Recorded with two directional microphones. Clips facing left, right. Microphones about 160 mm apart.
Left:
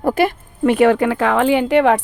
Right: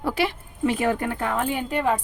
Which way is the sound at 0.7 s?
85° left.